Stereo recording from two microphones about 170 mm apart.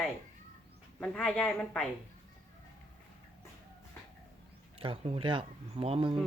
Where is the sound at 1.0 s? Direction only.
5° left (ahead or behind).